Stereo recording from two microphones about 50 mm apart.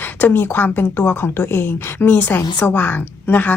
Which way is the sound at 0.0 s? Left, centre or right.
Left.